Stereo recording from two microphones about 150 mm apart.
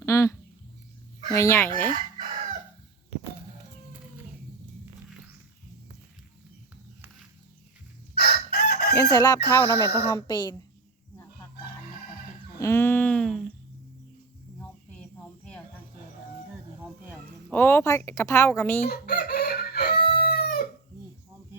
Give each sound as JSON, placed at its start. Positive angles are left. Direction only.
{"t": 0.0, "sound": "bird", "side_deg": 20}
{"t": 1.3, "sound": "speech", "side_deg": 20}
{"t": 8.2, "sound": "chicken", "side_deg": 90}
{"t": 9.0, "sound": "chicken", "side_deg": 20}
{"t": 9.5, "sound": "speech", "side_deg": 20}
{"t": 12.5, "sound": "speech", "side_deg": 15}
{"t": 17.5, "sound": "speech", "side_deg": 15}
{"t": 18.9, "sound": "crowing", "side_deg": 90}